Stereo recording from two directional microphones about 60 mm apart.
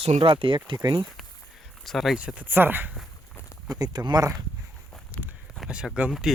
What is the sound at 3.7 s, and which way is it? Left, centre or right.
Speech, right.